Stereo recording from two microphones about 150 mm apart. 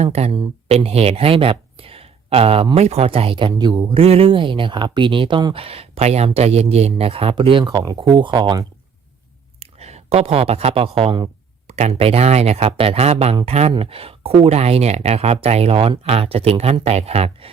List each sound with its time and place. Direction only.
0.0 s speech: 45° right (ahead or behind)
9.6 s speech: 45° right (ahead or behind)